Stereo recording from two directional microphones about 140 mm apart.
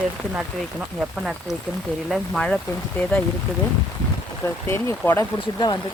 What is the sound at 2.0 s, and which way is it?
Speech, centre (ahead or behind).